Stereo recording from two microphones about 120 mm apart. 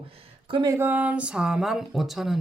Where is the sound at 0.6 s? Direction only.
20° right (ahead or behind); by 2.3 s centre (ahead or behind).